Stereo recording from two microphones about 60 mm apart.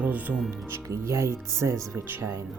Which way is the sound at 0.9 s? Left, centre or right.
Right.